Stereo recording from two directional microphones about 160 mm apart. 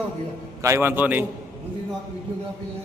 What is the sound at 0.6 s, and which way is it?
Speech, 15° right (ahead or behind).